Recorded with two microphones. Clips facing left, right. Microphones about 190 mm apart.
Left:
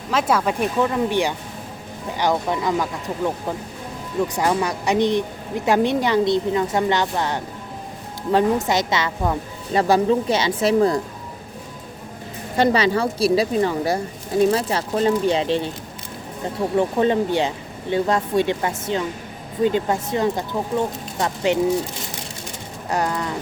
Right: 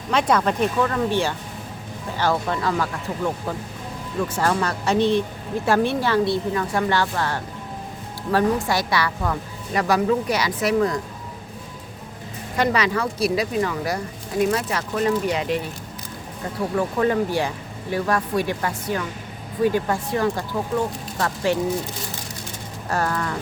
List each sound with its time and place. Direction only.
0.1 s speech: 5° left (ahead or behind); by 11.0 s 30° left (ahead or behind)
12.5 s speech: 30° left (ahead or behind)
16.7 s speech: 25° left (ahead or behind)
22.9 s speech: 15° left (ahead or behind)